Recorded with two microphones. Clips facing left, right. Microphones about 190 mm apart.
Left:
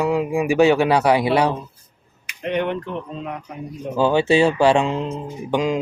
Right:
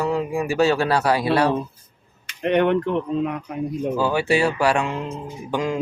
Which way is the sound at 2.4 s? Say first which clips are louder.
Right 4 dB; 65° right (ahead or behind).